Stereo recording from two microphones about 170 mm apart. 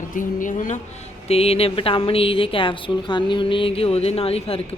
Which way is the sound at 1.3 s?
35° left (ahead or behind).